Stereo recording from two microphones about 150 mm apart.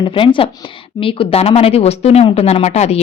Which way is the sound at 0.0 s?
35° left (ahead or behind).